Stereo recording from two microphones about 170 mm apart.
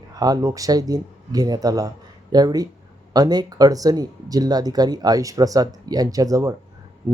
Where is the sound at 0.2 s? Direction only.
20° right (ahead or behind).